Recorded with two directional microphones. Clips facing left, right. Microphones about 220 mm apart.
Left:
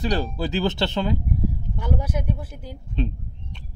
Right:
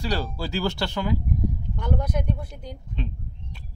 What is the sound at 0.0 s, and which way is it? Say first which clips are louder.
Speech: left 4 dB; 20° left (ahead or behind).